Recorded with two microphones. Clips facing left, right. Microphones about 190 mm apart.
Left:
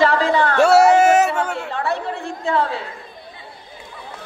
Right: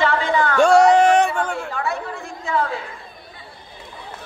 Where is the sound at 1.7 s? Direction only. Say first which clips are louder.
Left 3 dB; 30° left (ahead or behind).